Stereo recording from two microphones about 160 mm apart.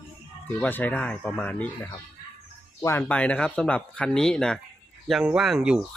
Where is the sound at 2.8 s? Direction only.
15° left (ahead or behind).